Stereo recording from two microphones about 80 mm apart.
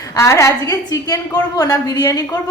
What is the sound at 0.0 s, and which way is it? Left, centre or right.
A woman's voice, left.